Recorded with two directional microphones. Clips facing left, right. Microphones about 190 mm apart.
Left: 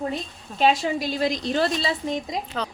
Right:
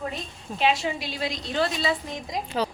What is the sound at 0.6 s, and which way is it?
A woman's voice, 45° left (ahead or behind).